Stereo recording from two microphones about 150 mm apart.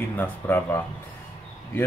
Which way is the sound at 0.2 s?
15° left (ahead or behind).